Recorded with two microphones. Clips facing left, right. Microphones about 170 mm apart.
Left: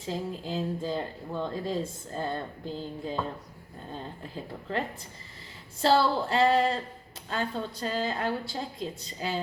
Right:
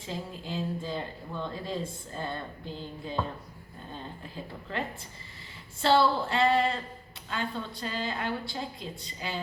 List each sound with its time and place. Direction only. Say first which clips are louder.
0.0 s speech: left 4 dB; 40° left (ahead or behind)
5.8 s speech: even; 40° left (ahead or behind)